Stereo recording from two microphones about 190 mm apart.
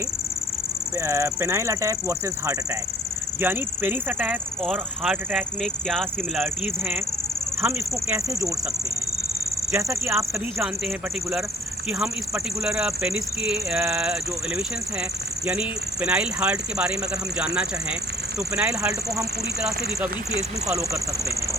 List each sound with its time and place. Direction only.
0.9 s speech: 15° right (ahead or behind)
9.7 s speech: 15° right (ahead or behind)